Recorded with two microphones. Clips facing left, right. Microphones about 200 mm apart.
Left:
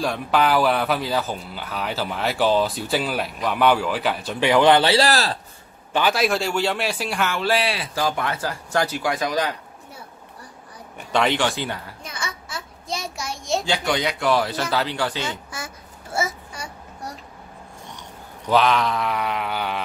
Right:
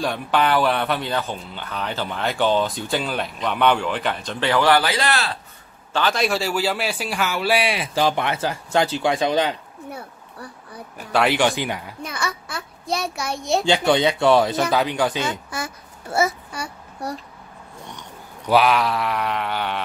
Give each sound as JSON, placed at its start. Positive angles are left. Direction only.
{"t": 0.0, "sound": "speech", "side_deg": 0}
{"t": 5.9, "sound": "a man's voice", "side_deg": 5}
{"t": 9.8, "sound": "a sound", "side_deg": -60}
{"t": 11.0, "sound": "a man's voice", "side_deg": -5}
{"t": 12.0, "sound": "a child's voice", "side_deg": -65}
{"t": 13.7, "sound": "speech", "side_deg": -25}
{"t": 15.2, "sound": "babbling", "side_deg": -65}
{"t": 18.5, "sound": "speech", "side_deg": -5}